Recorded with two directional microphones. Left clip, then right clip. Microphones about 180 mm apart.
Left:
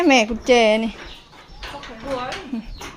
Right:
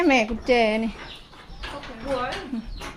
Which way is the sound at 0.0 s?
25° left (ahead or behind).